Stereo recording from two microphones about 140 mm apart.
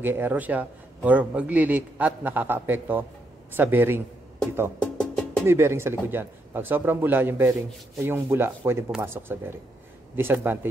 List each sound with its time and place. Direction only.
0.0 s a man's voice: 15° right (ahead or behind)
4.9 s music: 5° left (ahead or behind)
5.5 s a man's voice: 20° right (ahead or behind)